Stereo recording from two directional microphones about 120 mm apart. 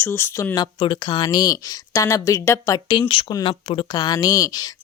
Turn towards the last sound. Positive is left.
turn(degrees=30)  # may be behind; listen again after turning